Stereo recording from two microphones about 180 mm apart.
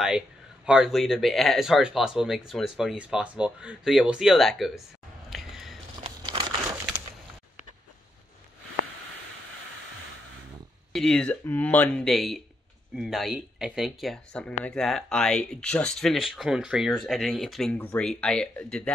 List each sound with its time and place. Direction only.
0.7 s speech: 5° right (ahead or behind)
5.3 s a sound: centre (ahead or behind)
6.0 s crumpling: 30° right (ahead or behind)
10.9 s speech: 5° left (ahead or behind)